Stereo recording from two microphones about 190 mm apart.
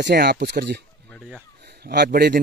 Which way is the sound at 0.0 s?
60° right (ahead or behind).